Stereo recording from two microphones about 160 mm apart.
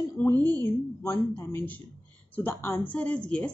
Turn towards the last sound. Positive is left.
turn(degrees=5)  # may be behind; listen again after turning